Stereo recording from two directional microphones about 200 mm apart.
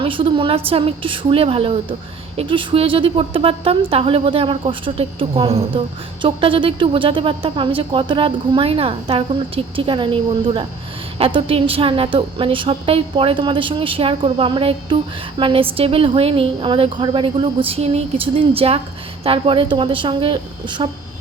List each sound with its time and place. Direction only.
0.0 s a woman's voice: 25° right (ahead or behind)